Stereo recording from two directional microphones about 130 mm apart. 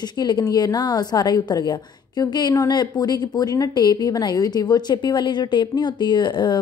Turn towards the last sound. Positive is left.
turn(degrees=35)  # may be behind; listen again after turning